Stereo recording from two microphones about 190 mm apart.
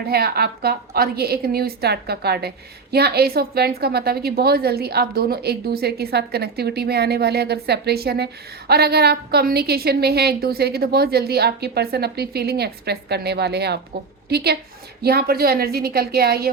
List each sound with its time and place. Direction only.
0.1 s a woman's voice: 55° right (ahead or behind)